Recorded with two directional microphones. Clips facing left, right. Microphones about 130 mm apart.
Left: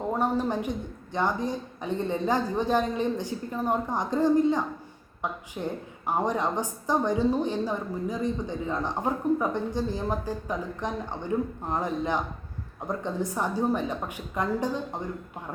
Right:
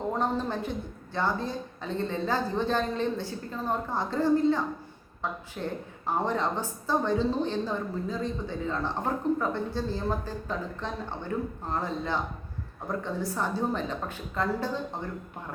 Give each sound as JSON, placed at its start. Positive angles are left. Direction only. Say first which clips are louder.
{"t": 0.1, "sound": "a woman's voice", "louder": "left 4 dB", "side_deg": 10}